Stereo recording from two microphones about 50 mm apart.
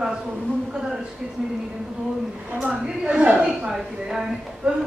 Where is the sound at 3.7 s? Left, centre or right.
Centre.